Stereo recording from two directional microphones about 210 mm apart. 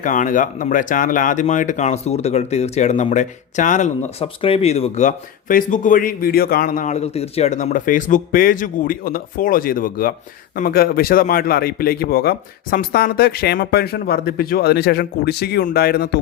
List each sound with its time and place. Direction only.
0.0 s speech: 40° left (ahead or behind)